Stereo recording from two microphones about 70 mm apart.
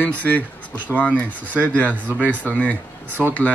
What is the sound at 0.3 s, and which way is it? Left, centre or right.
Speech, left.